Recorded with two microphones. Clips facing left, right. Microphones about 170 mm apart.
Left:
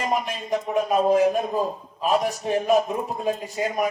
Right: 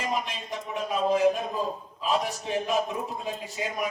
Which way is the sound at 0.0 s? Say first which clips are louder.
Left 5 dB; 50° left (ahead or behind).